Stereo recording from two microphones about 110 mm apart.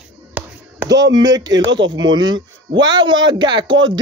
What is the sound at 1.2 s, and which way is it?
Speech, 40° right (ahead or behind).